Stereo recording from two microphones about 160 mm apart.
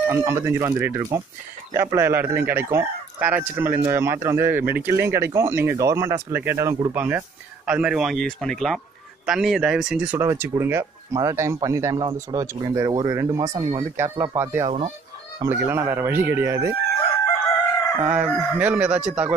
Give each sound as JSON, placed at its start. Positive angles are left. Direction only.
{"t": 0.1, "sound": "speech", "side_deg": -15}
{"t": 18.0, "sound": "speech", "side_deg": -10}